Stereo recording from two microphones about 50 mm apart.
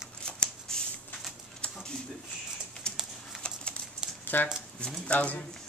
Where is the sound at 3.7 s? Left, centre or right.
Centre.